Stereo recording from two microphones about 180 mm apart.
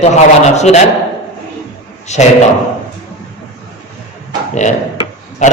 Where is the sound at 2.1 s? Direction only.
40° left (ahead or behind).